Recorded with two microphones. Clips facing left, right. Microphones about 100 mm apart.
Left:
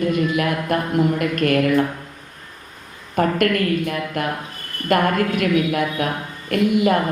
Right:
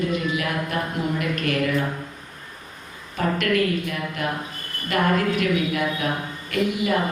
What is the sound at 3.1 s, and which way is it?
A woman's voice, 50° left (ahead or behind).